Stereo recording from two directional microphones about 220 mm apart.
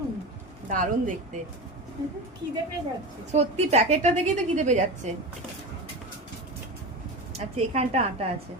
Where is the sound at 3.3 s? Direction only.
30° right (ahead or behind).